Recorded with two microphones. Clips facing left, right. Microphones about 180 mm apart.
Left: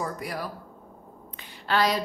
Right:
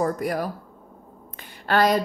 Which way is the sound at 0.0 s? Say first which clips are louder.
Right 8 dB; 45° right (ahead or behind).